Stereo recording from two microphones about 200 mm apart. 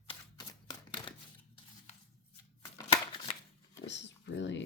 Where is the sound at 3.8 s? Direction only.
60° left (ahead or behind).